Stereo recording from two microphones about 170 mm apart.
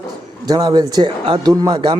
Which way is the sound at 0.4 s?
25° right (ahead or behind).